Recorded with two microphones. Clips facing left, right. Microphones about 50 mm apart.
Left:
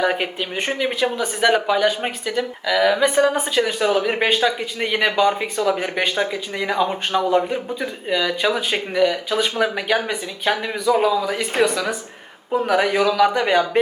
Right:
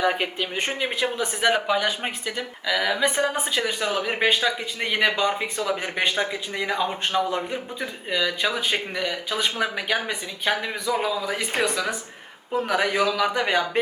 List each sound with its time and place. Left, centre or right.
0.0 s speech: centre
0.9 s speech: centre
1.4 s speech: centre
7.3 s speech: centre
12.7 s a man's voice: centre
13.1 s speech: centre